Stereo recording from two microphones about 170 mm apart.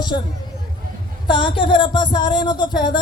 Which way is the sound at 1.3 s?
30° left (ahead or behind).